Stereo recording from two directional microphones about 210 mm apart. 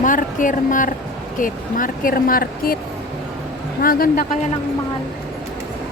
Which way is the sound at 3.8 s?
45° left (ahead or behind).